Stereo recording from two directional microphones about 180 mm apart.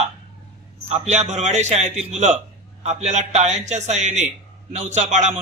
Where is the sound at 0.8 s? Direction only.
40° right (ahead or behind).